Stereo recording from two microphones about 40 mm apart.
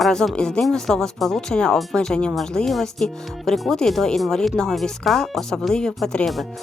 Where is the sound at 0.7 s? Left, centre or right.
Centre.